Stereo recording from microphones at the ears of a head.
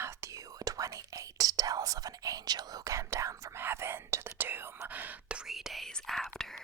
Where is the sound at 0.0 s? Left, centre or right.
Right.